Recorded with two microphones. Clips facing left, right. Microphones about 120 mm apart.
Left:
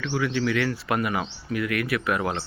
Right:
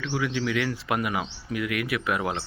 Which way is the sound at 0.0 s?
15° right (ahead or behind).